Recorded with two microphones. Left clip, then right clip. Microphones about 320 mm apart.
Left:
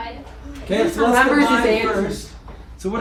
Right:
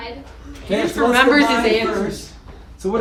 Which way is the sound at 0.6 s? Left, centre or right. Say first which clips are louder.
Even; centre.